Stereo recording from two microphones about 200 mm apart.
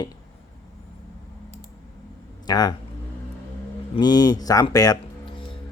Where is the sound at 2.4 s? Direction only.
20° left (ahead or behind).